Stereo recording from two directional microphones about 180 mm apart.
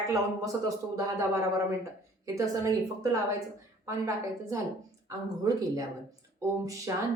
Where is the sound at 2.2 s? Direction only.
20° right (ahead or behind).